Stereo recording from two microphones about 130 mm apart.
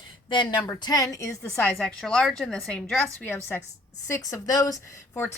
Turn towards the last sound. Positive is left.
turn(degrees=25)  # may be behind; listen again after turning